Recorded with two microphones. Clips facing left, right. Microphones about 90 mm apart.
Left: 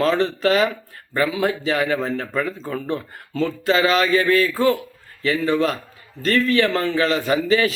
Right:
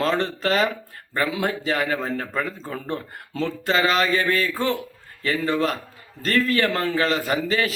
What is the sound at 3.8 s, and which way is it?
A man's voice, 35° right (ahead or behind).